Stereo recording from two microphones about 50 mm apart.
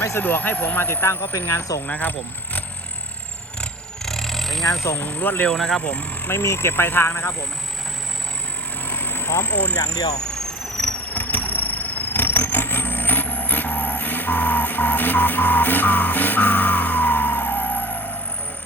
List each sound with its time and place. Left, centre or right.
0.2 s speech: left
1.4 s speech: left
1.9 s speech: left
3.6 s a sound: centre
4.9 s speech: left
5.5 s speech: centre
5.8 s speech: left
6.4 s speech: left
8.9 s vehicle: left
9.5 s speech: left
10.3 s vehicle: centre
11.1 s vehicle: left